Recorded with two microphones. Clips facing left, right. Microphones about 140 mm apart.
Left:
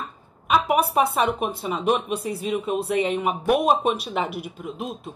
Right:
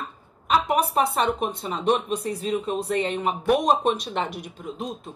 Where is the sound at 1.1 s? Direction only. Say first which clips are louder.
Left 1 dB; 5° left (ahead or behind).